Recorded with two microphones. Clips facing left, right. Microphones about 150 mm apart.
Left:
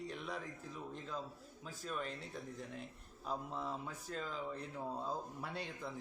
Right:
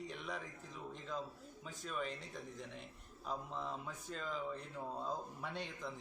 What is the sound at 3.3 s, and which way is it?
Speech, 5° left (ahead or behind).